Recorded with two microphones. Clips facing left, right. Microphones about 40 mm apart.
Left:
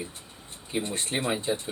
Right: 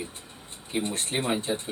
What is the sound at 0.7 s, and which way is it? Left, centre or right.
Speech, centre.